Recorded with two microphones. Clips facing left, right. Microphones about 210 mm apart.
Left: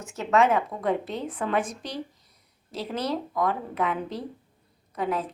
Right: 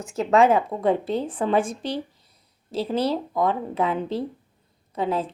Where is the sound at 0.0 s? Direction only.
30° right (ahead or behind).